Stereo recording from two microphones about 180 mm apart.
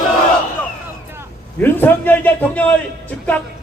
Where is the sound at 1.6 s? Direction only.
10° left (ahead or behind).